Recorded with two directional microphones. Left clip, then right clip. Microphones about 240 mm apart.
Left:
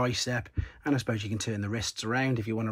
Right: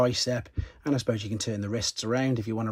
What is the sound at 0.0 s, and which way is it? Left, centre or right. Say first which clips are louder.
Speech: right 4 dB; centre.